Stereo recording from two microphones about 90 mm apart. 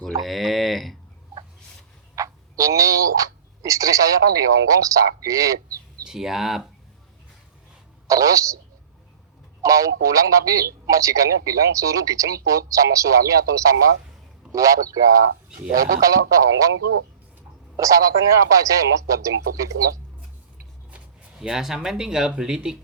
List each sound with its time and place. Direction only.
0.2 s speech: centre (ahead or behind)
2.1 s speech: 40° right (ahead or behind)
6.1 s speech: 5° right (ahead or behind)
8.0 s speech: 40° right (ahead or behind)
9.6 s speech: 40° right (ahead or behind)
17.7 s speech: 40° right (ahead or behind)
20.9 s speech: 10° right (ahead or behind)